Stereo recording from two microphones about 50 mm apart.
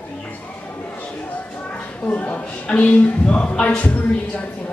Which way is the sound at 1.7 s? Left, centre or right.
Left.